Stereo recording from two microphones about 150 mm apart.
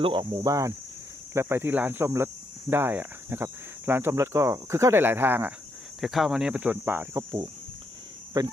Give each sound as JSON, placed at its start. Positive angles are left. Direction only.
{"t": 0.0, "sound": "cricket", "side_deg": -35}
{"t": 1.3, "sound": "speech", "side_deg": -15}
{"t": 6.0, "sound": "speech", "side_deg": 0}